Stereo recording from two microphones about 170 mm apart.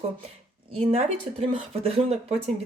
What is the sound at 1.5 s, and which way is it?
Speech, 35° right (ahead or behind).